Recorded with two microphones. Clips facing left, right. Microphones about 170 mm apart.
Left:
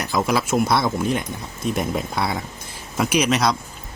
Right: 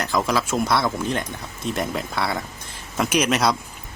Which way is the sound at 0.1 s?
10° left (ahead or behind).